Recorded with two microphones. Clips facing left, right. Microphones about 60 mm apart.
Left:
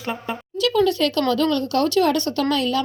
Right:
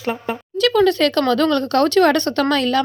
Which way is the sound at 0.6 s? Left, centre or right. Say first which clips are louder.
Right 4 dB; right.